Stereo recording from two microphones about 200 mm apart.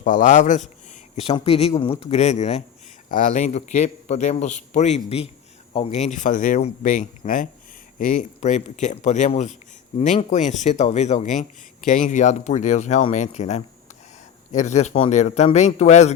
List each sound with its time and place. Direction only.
0.0 s speech: 40° left (ahead or behind)